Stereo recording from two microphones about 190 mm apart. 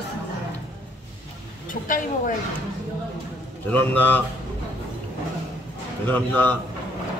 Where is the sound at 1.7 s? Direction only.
45° left (ahead or behind).